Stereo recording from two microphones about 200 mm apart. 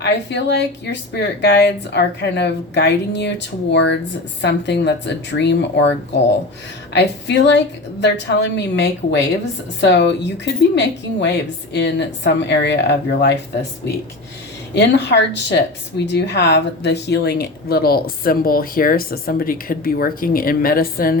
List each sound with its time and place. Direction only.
0.0 s speech: 60° left (ahead or behind)
6.9 s speech: 60° left (ahead or behind)
14.8 s speech: 60° left (ahead or behind)